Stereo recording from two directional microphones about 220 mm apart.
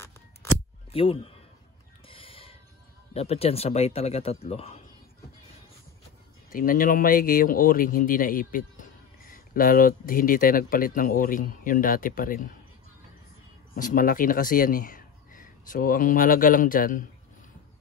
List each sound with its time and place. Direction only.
0.9 s speech: 25° left (ahead or behind)
2.0 s music: 25° left (ahead or behind)
3.1 s speech: 30° left (ahead or behind)
6.5 s speech: 40° left (ahead or behind)
13.7 s speech: 40° left (ahead or behind)